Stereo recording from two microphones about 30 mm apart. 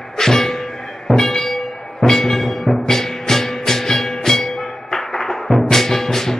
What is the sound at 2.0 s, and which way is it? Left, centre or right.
Music, centre.